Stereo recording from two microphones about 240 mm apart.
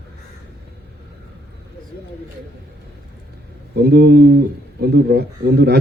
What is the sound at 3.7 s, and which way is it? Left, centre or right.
A man's voice, right.